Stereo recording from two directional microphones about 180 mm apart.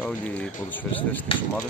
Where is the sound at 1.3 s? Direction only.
30° left (ahead or behind).